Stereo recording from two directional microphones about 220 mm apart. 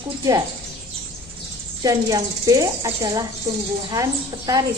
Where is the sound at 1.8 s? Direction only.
15° right (ahead or behind).